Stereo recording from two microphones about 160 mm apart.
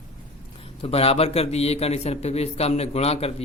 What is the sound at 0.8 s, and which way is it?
A man's voice, 40° left (ahead or behind).